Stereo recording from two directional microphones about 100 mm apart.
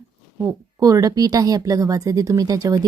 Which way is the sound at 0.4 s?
35° right (ahead or behind).